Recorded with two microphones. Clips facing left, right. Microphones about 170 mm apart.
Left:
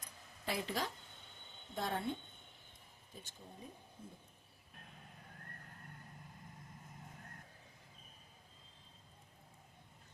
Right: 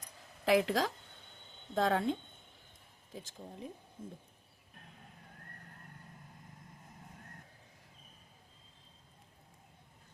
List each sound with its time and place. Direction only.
0.4 s speech: 90° right